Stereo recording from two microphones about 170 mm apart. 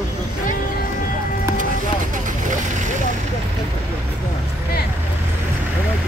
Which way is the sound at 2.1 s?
50° right (ahead or behind).